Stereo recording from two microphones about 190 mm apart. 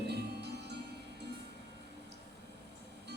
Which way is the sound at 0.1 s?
60° right (ahead or behind).